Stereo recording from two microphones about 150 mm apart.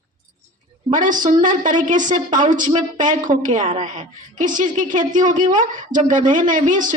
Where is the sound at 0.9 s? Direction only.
60° right (ahead or behind).